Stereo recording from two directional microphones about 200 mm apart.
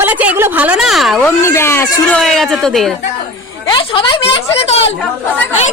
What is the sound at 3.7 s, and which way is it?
Speech, 25° left (ahead or behind).